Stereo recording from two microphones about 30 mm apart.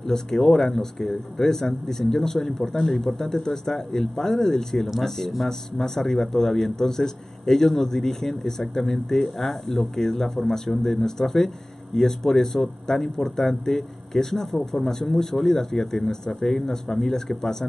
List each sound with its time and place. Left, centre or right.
0.0 s speech: centre